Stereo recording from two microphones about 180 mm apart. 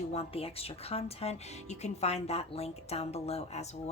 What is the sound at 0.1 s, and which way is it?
Speech, 35° left (ahead or behind).